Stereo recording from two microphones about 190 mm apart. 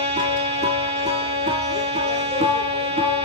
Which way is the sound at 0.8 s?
30° right (ahead or behind).